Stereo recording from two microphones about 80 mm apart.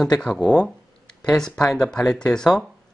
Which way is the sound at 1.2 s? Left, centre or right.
Centre.